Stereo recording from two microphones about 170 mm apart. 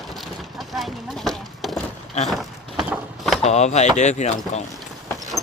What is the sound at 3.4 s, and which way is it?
Speech, 40° left (ahead or behind).